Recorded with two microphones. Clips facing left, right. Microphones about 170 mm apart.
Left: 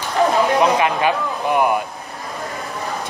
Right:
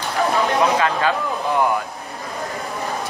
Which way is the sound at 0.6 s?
15° left (ahead or behind).